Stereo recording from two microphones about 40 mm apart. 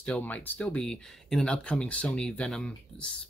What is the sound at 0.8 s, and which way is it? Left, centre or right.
Speech, centre.